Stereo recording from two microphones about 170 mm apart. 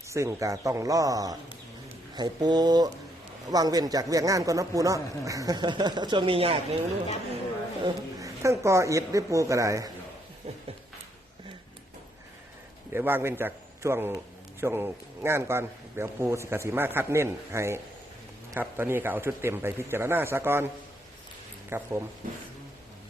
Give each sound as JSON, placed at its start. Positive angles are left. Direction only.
{"t": 0.1, "sound": "speech", "side_deg": -20}
{"t": 7.9, "sound": "speech", "side_deg": -20}
{"t": 10.4, "sound": "a sound", "side_deg": -35}
{"t": 12.9, "sound": "a man's voice", "side_deg": -10}
{"t": 21.7, "sound": "a man's voice", "side_deg": -10}